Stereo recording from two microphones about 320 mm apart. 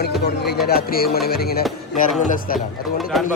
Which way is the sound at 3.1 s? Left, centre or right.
Centre.